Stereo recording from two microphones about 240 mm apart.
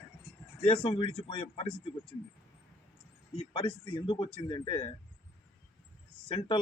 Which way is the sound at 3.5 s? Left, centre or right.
Centre.